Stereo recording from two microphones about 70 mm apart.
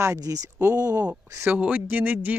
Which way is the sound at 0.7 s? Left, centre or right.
Right.